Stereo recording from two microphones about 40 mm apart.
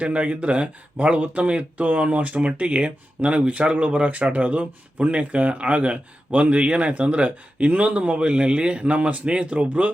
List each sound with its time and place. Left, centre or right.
0.0 s speech: right